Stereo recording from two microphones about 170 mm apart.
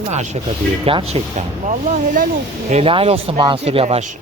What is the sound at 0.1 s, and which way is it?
Speech, 45° right (ahead or behind).